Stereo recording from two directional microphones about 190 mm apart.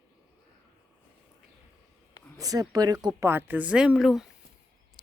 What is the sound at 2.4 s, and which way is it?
Speech, 20° right (ahead or behind).